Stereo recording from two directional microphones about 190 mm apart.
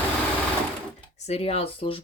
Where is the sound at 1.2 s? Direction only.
30° left (ahead or behind).